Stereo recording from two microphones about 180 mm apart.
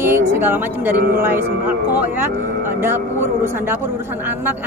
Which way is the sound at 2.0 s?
10° right (ahead or behind).